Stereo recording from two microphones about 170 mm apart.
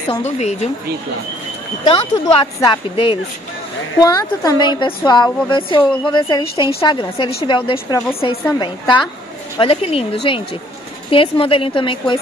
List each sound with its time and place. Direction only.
0.1 s a woman's voice: 40° left (ahead or behind)
1.9 s a woman's voice: 30° left (ahead or behind)